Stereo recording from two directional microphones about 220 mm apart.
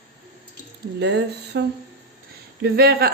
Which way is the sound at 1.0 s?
50° right (ahead or behind).